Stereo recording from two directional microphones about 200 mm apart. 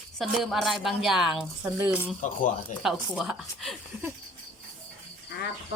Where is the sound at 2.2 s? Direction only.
40° left (ahead or behind).